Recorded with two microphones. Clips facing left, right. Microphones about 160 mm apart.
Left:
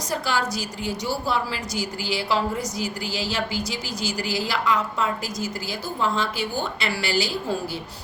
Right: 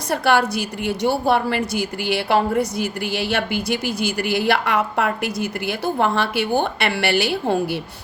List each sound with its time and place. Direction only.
0.1 s a woman's voice: 60° right (ahead or behind)